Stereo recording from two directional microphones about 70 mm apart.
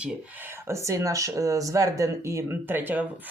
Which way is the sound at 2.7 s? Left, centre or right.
Right.